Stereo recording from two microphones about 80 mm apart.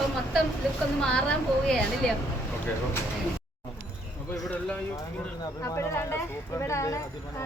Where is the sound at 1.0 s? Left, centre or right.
Centre.